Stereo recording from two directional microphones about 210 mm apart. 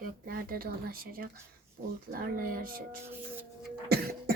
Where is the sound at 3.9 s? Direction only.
45° right (ahead or behind).